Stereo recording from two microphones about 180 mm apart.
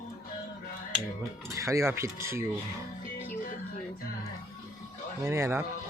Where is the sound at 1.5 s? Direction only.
15° right (ahead or behind).